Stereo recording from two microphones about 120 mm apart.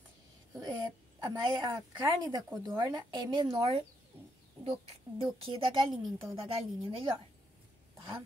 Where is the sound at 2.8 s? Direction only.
35° right (ahead or behind).